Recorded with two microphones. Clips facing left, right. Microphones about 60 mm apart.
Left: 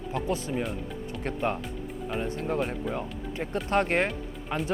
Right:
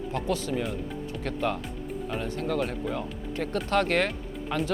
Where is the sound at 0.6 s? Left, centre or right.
Centre.